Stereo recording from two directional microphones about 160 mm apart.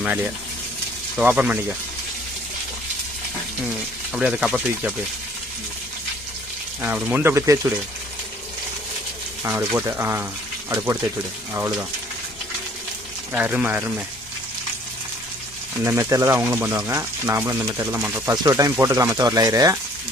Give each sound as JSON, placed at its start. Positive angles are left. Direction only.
{"t": 0.0, "sound": "speech", "side_deg": -5}
{"t": 4.1, "sound": "speech", "side_deg": -5}
{"t": 6.8, "sound": "speech", "side_deg": -10}
{"t": 9.4, "sound": "speech", "side_deg": -10}
{"t": 13.3, "sound": "speech", "side_deg": -10}
{"t": 15.8, "sound": "speech", "side_deg": -15}